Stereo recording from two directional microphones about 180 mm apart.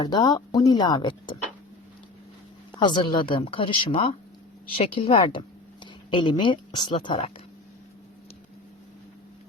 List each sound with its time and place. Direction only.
0.0 s speech: 25° left (ahead or behind)
2.7 s speech: 25° left (ahead or behind)
5.8 s a sound: 25° left (ahead or behind)
6.7 s speech: 25° left (ahead or behind)